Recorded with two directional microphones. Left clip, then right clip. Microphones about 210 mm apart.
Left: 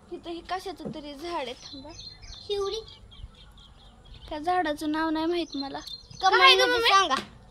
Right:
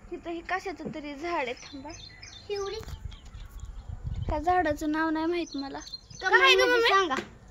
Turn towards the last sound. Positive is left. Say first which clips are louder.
# left 2 dB
turn(degrees=-5)  # may be behind; listen again after turning